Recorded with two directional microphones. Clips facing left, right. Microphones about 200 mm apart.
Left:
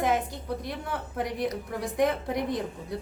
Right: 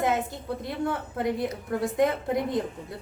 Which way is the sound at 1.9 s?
25° right (ahead or behind).